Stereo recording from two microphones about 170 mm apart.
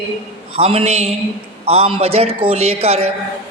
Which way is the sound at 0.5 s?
35° right (ahead or behind).